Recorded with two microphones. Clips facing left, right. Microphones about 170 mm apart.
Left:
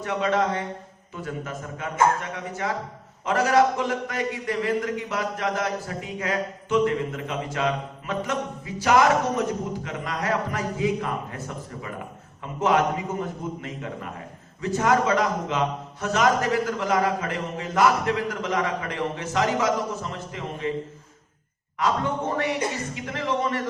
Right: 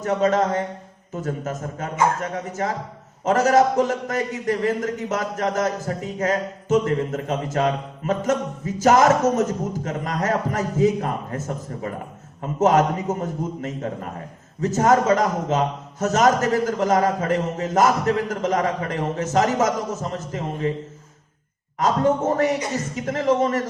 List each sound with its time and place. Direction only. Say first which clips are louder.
0.0 s a man's voice: right 4 dB; 40° right (ahead or behind)
21.8 s a man's voice: right 5 dB; 40° right (ahead or behind)